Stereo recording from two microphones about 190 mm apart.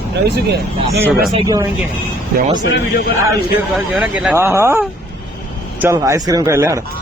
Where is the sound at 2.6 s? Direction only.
70° left (ahead or behind).